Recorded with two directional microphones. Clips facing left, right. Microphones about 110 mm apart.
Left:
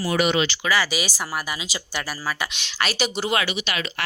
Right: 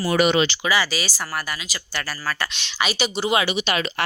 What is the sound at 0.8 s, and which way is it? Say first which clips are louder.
Speech: even; 10° left (ahead or behind).